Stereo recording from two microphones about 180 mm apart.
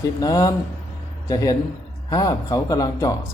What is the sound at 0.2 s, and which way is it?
Speech, 20° left (ahead or behind).